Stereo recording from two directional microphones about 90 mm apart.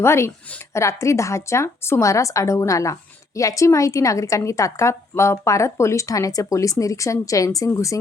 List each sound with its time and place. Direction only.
0.0 s a woman's voice: 30° left (ahead or behind)